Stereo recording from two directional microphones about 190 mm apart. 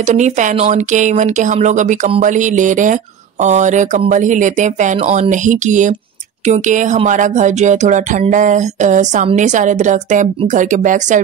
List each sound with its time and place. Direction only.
0.0 s speech: 40° right (ahead or behind)